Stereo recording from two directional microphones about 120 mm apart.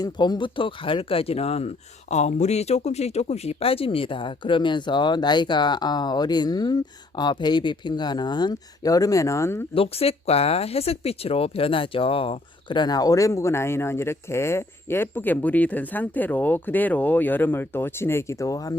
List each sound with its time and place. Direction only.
0.0 s speech: 35° left (ahead or behind)
9.7 s speech: 55° left (ahead or behind); by 18.8 s 30° left (ahead or behind)